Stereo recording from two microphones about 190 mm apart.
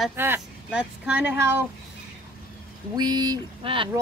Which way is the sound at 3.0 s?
20° right (ahead or behind).